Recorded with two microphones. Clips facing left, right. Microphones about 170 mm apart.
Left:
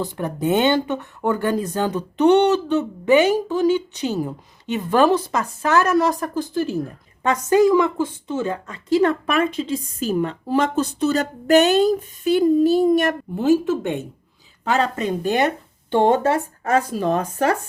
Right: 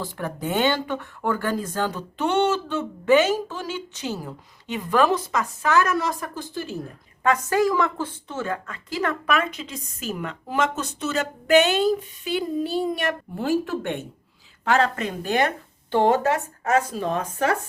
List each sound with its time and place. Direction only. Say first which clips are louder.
0.0 s speech: left 6 dB; 20° left (ahead or behind); by 6.7 s 45° left (ahead or behind)
7.2 s a woman's voice: left 5 dB; 20° left (ahead or behind); by 13.1 s 45° left (ahead or behind)
13.3 s a woman's voice: left 7 dB; 20° left (ahead or behind); by 17.5 s 40° left (ahead or behind)